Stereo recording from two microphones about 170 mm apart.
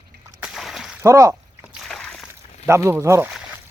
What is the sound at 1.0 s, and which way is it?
Speech, 20° right (ahead or behind).